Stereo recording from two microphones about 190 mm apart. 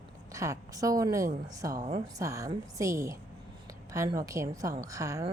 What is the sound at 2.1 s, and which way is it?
Speech, 15° right (ahead or behind).